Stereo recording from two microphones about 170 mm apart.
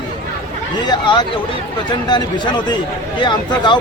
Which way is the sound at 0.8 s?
25° left (ahead or behind).